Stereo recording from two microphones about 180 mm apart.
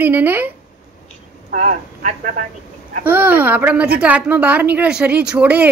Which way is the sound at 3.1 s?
10° right (ahead or behind).